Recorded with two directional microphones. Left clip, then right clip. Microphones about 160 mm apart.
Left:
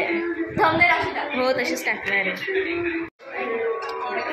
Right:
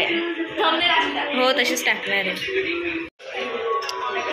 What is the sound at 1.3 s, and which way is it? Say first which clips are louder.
Speech: right 3 dB; 5° left (ahead or behind).